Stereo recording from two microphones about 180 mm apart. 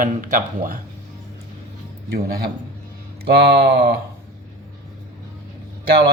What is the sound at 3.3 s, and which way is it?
Speech, 60° right (ahead or behind).